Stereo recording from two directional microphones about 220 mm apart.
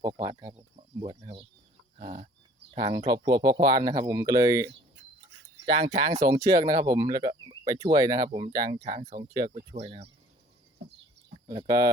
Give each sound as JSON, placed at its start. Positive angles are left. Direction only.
{"t": 0.3, "sound": "speech", "side_deg": -15}
{"t": 2.0, "sound": "chicken", "side_deg": -25}
{"t": 2.7, "sound": "speech", "side_deg": -20}
{"t": 5.6, "sound": "speech", "side_deg": -25}
{"t": 6.4, "sound": "speech", "side_deg": -15}
{"t": 8.8, "sound": "speech", "side_deg": -30}
{"t": 11.4, "sound": "speech", "side_deg": -15}